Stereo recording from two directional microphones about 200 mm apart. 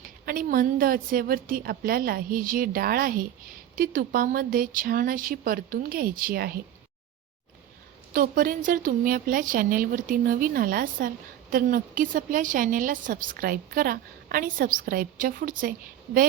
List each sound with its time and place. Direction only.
0.3 s a woman's voice: 45° right (ahead or behind)
8.1 s a woman's voice: 45° right (ahead or behind)